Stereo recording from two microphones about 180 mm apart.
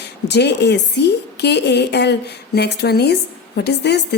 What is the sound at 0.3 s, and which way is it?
A woman's voice, 70° left (ahead or behind).